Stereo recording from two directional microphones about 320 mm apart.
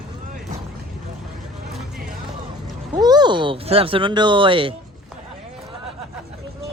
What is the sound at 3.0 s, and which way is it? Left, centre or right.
Speech, centre.